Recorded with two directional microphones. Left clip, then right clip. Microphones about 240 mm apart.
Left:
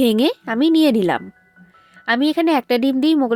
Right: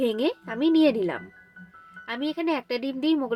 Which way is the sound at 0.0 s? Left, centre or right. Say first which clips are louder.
Left 8 dB; left.